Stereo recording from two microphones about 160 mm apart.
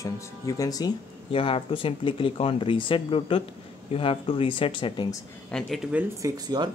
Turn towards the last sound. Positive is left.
turn(degrees=-25)  # may be behind; listen again after turning